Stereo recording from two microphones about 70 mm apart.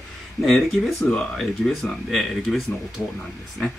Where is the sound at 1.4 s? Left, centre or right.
Centre.